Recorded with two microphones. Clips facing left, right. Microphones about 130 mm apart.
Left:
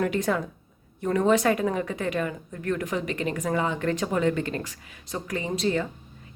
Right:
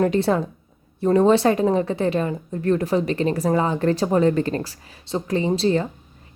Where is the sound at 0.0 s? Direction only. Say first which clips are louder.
Right 6 dB; 30° right (ahead or behind).